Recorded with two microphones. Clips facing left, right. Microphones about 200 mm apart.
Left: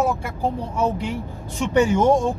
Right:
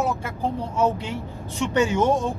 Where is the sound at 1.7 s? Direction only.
15° left (ahead or behind).